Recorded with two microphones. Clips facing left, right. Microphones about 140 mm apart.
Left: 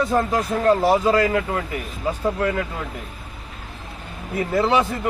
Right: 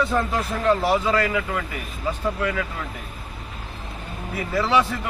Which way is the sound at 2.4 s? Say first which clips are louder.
Left 3 dB; 45° left (ahead or behind).